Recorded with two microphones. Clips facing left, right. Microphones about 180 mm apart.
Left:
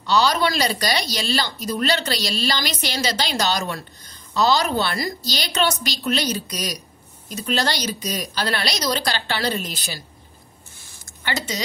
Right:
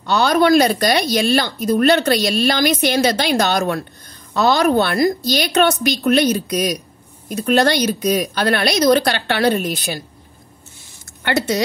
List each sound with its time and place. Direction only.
0.0 s speech: 55° right (ahead or behind)
11.2 s speech: 60° right (ahead or behind)